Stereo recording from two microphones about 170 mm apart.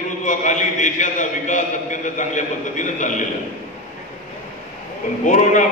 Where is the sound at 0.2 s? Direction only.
45° left (ahead or behind).